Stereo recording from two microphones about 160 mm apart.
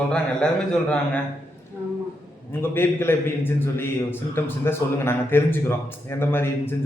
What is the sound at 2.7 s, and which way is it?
A man's voice, 15° left (ahead or behind).